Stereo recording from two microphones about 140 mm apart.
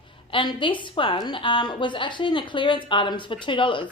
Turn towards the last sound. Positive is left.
turn(degrees=35)  # may be behind; listen again after turning